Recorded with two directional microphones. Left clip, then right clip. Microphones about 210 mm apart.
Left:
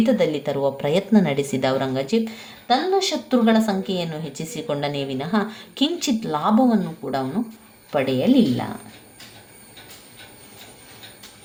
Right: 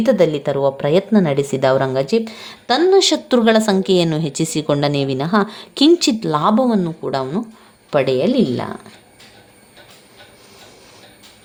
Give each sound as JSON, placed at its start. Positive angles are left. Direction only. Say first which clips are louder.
{"t": 0.0, "sound": "a woman's voice", "louder": "right 5 dB", "side_deg": -30}